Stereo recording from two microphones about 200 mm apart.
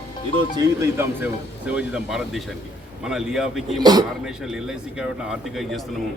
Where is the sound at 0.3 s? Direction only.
20° right (ahead or behind); by 3.8 s centre (ahead or behind).